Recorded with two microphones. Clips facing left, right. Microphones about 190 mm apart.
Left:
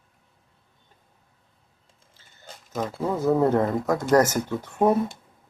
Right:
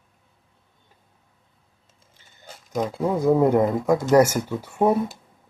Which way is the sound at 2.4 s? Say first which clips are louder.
Right 4 dB; 15° right (ahead or behind).